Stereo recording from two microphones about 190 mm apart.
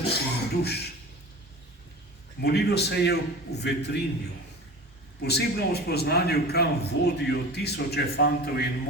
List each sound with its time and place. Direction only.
0.0 s beatboxing: 55° left (ahead or behind)
2.4 s a man's voice: 60° left (ahead or behind)
5.2 s a man's voice: 60° left (ahead or behind)